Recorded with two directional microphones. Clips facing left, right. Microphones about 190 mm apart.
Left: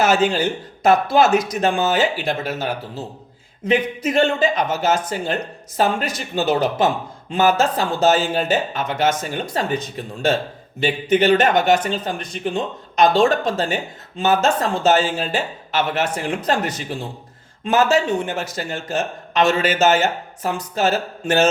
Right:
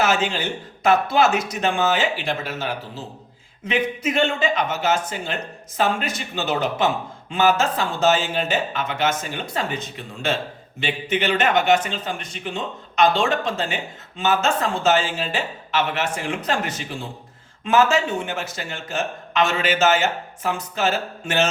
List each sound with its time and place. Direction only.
0.0 s speech: 40° left (ahead or behind)